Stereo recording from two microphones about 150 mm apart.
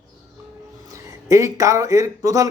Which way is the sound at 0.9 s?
20° right (ahead or behind).